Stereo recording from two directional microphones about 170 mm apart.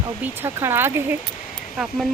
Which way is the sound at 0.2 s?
15° right (ahead or behind).